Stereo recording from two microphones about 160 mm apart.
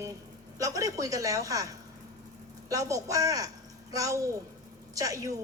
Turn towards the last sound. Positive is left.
turn(degrees=-20)  # may be behind; listen again after turning